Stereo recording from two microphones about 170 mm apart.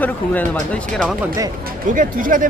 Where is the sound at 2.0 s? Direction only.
55° right (ahead or behind).